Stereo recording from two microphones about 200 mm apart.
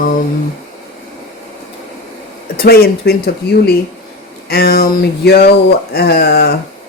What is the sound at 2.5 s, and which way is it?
Speech, 50° left (ahead or behind).